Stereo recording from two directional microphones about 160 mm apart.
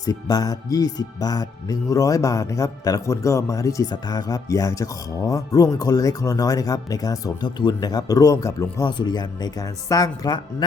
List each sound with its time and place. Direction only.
0.0 s speech: 25° left (ahead or behind)